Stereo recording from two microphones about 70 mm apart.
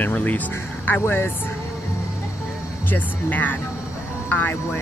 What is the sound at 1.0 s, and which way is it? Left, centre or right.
Speech, left.